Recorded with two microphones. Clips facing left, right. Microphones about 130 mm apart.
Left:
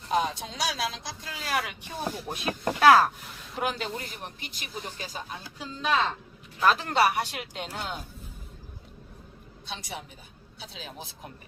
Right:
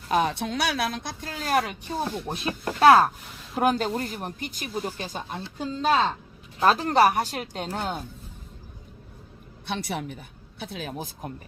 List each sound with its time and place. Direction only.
0.1 s a woman's voice: 65° right (ahead or behind); by 1.9 s 40° right (ahead or behind)
2.2 s speech: 30° right (ahead or behind)
3.5 s speech: 45° right (ahead or behind)
5.3 s speech: 30° right (ahead or behind)
9.6 s a woman's voice: 60° right (ahead or behind)